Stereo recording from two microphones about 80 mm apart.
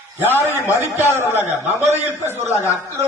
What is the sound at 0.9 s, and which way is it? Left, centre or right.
A man's voice, right.